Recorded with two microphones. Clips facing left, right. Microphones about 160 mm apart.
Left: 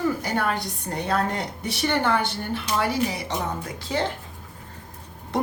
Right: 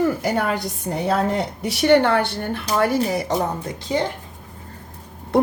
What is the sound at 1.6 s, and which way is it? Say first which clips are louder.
Speech: right 9 dB; 80° right.